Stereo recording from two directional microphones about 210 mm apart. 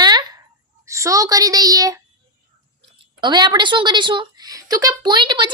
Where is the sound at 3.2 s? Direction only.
20° right (ahead or behind).